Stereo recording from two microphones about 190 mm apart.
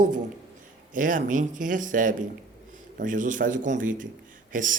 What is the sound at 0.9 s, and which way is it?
Speech, 45° right (ahead or behind).